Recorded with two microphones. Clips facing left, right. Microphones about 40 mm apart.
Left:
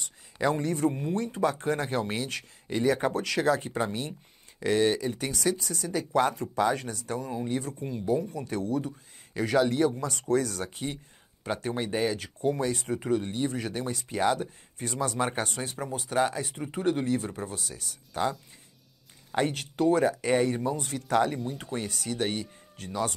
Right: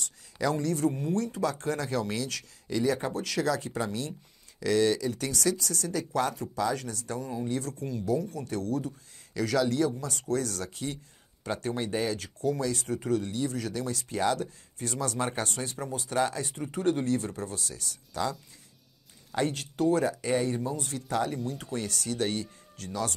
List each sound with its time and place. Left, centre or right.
0.4 s speech: left
10.2 s speech: left
12.8 s speech: left
18.1 s speech: left
19.3 s speech: left
21.1 s speech: left
21.5 s speech: left